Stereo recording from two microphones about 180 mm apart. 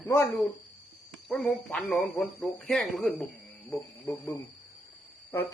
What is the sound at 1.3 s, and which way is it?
A man's voice, 5° left (ahead or behind).